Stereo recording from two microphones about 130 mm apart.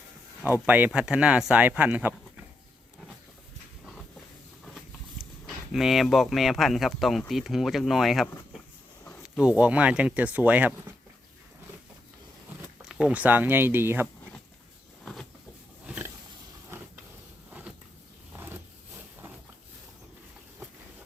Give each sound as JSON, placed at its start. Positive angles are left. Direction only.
{"t": 0.6, "sound": "speech", "side_deg": -15}
{"t": 4.6, "sound": "a sound", "side_deg": 0}
{"t": 5.7, "sound": "speech", "side_deg": 0}
{"t": 12.8, "sound": "speech", "side_deg": -5}
{"t": 15.0, "sound": "cupboard open or close", "side_deg": 5}
{"t": 15.9, "sound": "pig", "side_deg": -10}
{"t": 18.3, "sound": "vehicle", "side_deg": -15}